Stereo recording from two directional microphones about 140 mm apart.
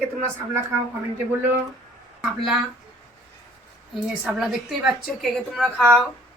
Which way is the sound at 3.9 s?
5° right (ahead or behind).